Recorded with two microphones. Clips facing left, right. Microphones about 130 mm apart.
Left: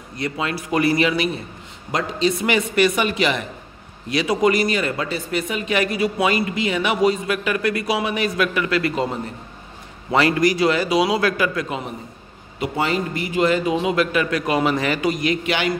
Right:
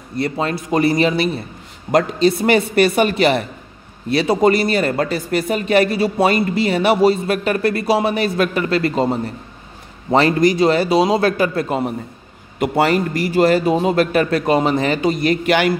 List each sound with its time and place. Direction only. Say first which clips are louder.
0.2 s a man's voice: right 4 dB; 35° right (ahead or behind)
12.5 s a man's voice: right 6 dB; 60° right (ahead or behind)
13.1 s a man's voice: right 5 dB; 40° right (ahead or behind)
15.2 s a man's voice: right 5 dB; 45° right (ahead or behind)